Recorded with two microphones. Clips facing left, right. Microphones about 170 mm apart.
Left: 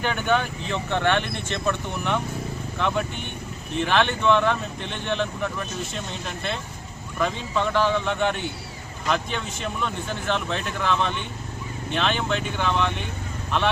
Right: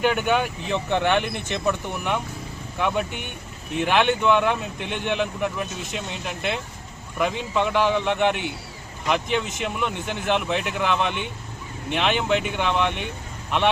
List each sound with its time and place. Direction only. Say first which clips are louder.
0.0 s speech: right 2 dB; 10° right (ahead or behind)